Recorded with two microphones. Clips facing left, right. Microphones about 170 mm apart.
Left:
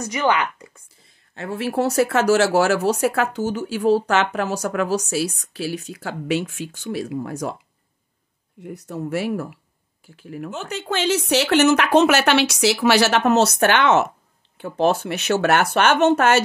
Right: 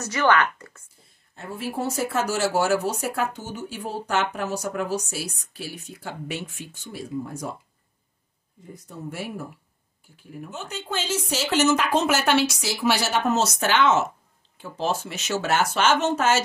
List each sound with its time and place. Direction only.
0.0 s a woman's voice: 15° left (ahead or behind)
1.0 s speech: 85° left
8.5 s speech: 75° left (ahead or behind)